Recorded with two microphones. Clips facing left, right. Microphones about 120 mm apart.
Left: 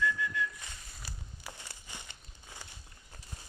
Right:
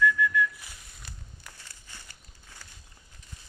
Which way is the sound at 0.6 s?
Centre (ahead or behind).